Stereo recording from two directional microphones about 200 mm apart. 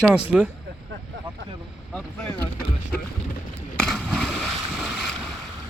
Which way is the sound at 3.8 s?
Centre (ahead or behind).